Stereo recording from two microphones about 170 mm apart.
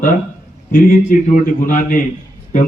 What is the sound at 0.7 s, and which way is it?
A man's voice, 55° left (ahead or behind).